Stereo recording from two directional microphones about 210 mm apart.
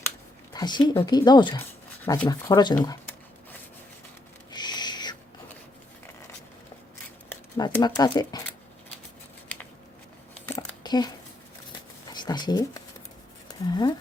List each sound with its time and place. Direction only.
0.5 s speech: 20° left (ahead or behind)
4.5 s owl: 20° left (ahead or behind)
7.3 s speech: 15° left (ahead or behind)
10.5 s a sound: 20° left (ahead or behind)
12.1 s speech: 20° left (ahead or behind)